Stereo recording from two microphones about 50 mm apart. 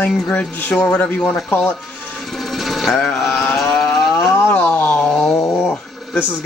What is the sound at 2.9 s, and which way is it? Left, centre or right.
Speech, left.